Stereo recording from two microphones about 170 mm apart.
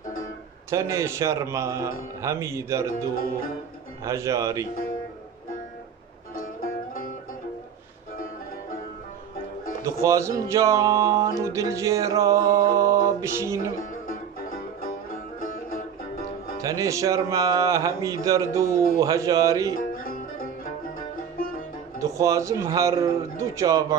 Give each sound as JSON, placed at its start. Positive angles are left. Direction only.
{"t": 0.7, "sound": "a man's voice", "side_deg": -15}
{"t": 4.0, "sound": "speech", "side_deg": -20}
{"t": 6.4, "sound": "music", "side_deg": 55}
{"t": 9.8, "sound": "speech", "side_deg": -20}
{"t": 13.7, "sound": "music", "side_deg": 55}
{"t": 16.6, "sound": "speech", "side_deg": -20}
{"t": 19.7, "sound": "music", "side_deg": 55}
{"t": 22.0, "sound": "speech", "side_deg": -20}